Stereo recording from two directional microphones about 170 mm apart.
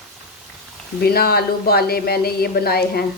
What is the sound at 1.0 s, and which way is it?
A woman's voice, 65° left (ahead or behind).